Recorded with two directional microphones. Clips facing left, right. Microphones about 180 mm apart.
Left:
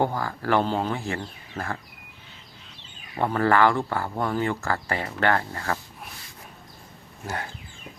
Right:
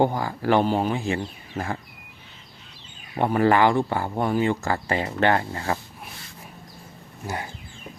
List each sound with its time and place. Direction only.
0.0 s speech: 20° right (ahead or behind)
3.2 s speech: 15° right (ahead or behind)